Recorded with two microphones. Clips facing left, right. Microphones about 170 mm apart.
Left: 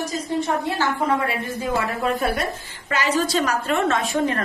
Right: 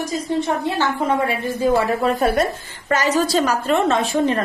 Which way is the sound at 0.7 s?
25° right (ahead or behind).